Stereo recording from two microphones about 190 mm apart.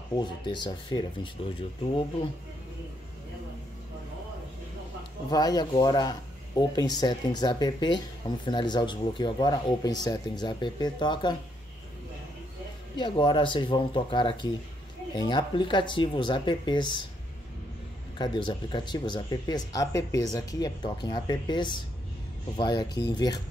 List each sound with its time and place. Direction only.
0.1 s speech: 25° left (ahead or behind)
5.3 s speech: 20° left (ahead or behind)
12.9 s speech: 25° left (ahead or behind)
18.1 s speech: 25° left (ahead or behind)